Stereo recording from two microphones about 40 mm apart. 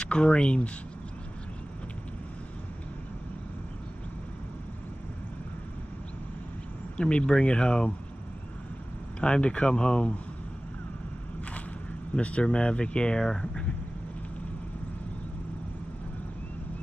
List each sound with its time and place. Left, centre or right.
0.0 s speech: left
7.0 s speech: left
9.2 s speech: left
12.2 s speech: left; by 13.5 s centre